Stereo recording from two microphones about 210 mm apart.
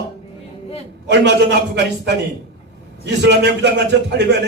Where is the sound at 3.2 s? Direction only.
55° right (ahead or behind).